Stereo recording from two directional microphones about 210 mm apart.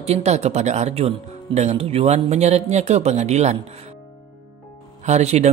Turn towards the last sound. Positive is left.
turn(degrees=-30)  # may be behind; listen again after turning